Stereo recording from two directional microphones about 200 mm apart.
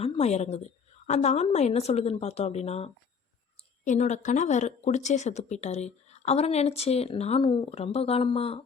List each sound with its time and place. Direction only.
0.0 s speech: 30° left (ahead or behind)